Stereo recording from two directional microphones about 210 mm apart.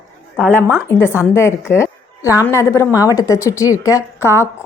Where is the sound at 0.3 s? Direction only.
5° left (ahead or behind).